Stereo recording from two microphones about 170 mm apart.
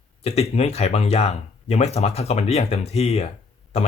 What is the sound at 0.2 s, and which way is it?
Speech, 35° left (ahead or behind).